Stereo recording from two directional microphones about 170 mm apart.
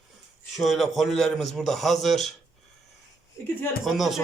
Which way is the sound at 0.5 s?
Centre (ahead or behind).